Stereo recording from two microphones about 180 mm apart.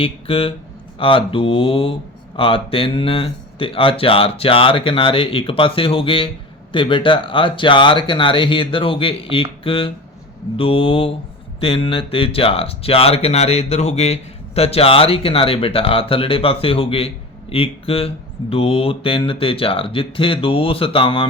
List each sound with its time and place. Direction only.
0.0 s speech: 30° left (ahead or behind)